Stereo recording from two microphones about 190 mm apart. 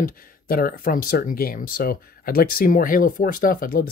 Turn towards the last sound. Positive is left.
turn(degrees=50)  # may be behind; listen again after turning